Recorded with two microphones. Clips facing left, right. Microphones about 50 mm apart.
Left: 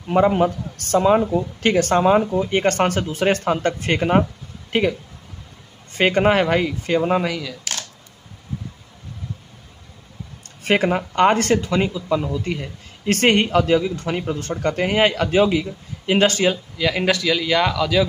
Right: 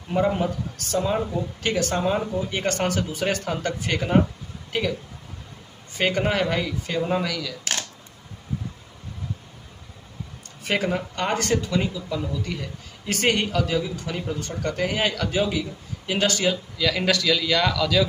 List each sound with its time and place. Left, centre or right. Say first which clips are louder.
0.1 s speech: left 6 dB; left
1.6 s speech: left 7 dB; left
4.7 s speech: left 7 dB; left
5.9 s speech: left 6 dB; left
10.6 s speech: left 6 dB; left
16.7 s a man's voice: left 3 dB; left